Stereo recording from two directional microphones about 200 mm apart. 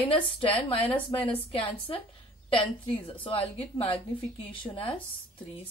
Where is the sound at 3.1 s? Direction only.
25° left (ahead or behind).